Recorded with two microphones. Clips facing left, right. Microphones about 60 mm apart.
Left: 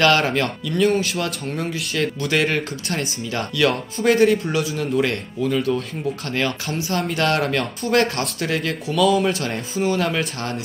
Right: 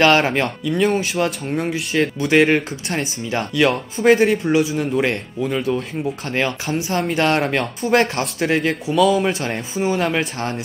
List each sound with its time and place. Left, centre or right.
0.0 s speech: right
8.9 s speech: centre
9.3 s speech: right